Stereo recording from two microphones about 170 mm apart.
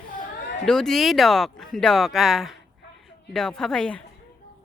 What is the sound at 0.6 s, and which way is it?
Speech, 5° left (ahead or behind).